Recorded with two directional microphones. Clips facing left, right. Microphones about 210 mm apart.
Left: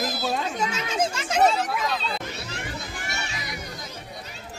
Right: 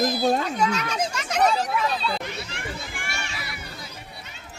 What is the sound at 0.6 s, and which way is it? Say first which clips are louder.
A child's voice: right 1 dB; 25° left (ahead or behind).